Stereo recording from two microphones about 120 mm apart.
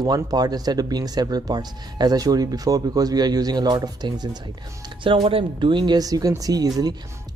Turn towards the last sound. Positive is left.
turn(degrees=-30)  # may be behind; listen again after turning